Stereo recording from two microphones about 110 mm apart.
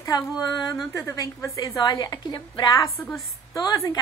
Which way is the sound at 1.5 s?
40° left (ahead or behind).